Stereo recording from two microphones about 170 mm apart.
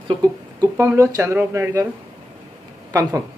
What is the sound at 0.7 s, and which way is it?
Speech, 15° right (ahead or behind).